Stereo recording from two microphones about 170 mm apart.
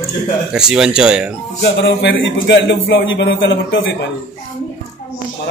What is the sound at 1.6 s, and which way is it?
A man's voice, 90° left.